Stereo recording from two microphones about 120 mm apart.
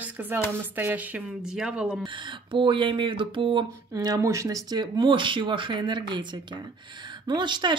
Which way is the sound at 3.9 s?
30° right (ahead or behind).